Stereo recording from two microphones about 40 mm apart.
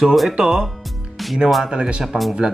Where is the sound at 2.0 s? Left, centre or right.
Centre.